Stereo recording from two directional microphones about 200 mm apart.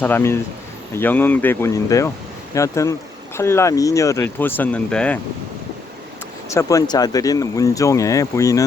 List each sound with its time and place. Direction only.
0.0 s speech: 10° left (ahead or behind)
6.5 s speech: 15° left (ahead or behind)